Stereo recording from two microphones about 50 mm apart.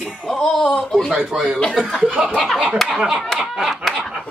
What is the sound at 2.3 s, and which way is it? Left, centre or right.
Speech, centre.